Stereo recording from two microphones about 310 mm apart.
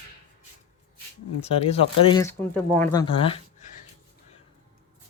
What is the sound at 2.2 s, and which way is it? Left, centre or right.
Speech, centre.